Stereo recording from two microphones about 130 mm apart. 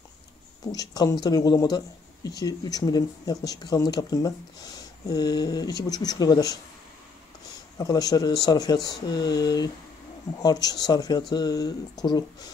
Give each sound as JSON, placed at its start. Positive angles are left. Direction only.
{"t": 0.7, "sound": "speech", "side_deg": 30}
{"t": 7.7, "sound": "speech", "side_deg": 30}